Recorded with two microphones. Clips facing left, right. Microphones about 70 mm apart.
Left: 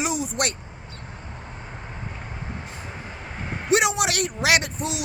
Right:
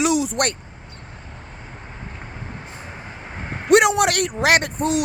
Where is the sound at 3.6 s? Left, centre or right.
Right.